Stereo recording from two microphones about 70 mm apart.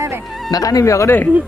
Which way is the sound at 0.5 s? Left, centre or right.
Left.